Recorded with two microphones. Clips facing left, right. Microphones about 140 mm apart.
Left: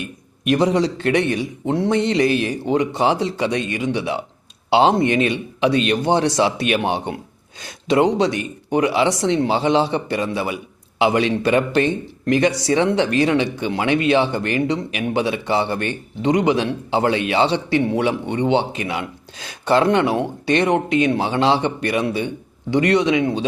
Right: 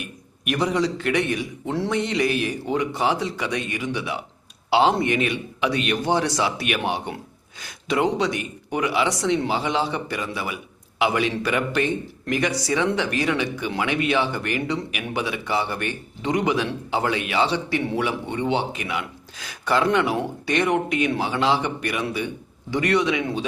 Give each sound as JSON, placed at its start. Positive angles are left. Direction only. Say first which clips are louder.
{"t": 0.4, "sound": "speech", "louder": "left 5 dB", "side_deg": 25}